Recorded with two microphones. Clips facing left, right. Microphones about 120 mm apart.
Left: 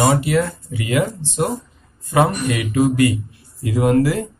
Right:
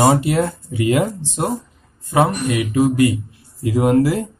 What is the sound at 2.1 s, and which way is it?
Speech, 20° right (ahead or behind).